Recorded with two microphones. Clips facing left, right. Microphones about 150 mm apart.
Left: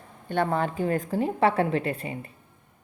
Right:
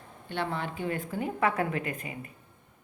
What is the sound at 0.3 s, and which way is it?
A woman's voice, 45° left (ahead or behind).